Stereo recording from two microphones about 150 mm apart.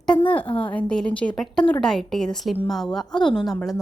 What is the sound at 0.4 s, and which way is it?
Speech, 35° left (ahead or behind).